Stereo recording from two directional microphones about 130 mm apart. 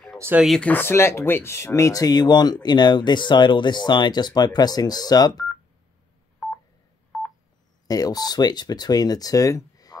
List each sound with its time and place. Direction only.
0.6 s speech: 15° left (ahead or behind); by 5.5 s 30° left (ahead or behind)
7.9 s speech: 30° left (ahead or behind)